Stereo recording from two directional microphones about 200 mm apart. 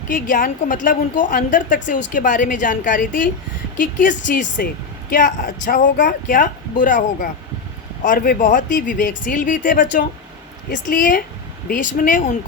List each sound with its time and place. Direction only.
0.1 s speech: 40° left (ahead or behind)